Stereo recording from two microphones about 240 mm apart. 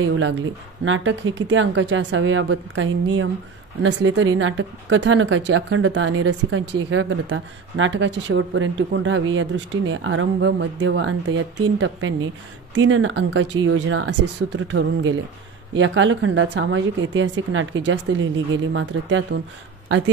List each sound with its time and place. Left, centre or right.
0.0 s speech: right